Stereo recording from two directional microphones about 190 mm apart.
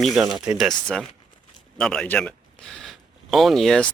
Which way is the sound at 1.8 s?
5° left (ahead or behind).